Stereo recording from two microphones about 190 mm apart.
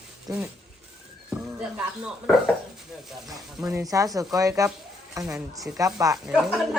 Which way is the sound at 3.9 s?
20° right (ahead or behind).